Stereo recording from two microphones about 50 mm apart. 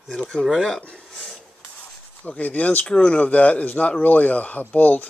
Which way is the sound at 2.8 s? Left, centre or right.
Centre.